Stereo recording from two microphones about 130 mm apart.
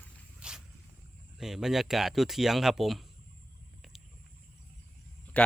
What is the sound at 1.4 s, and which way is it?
Speech, 5° right (ahead or behind).